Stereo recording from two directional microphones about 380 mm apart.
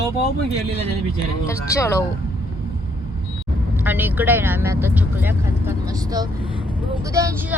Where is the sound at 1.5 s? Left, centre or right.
Centre.